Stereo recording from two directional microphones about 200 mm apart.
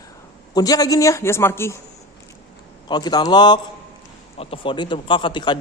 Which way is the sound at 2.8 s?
20° left (ahead or behind).